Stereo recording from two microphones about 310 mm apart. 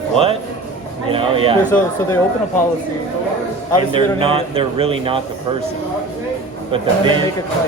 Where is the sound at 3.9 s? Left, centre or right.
Centre.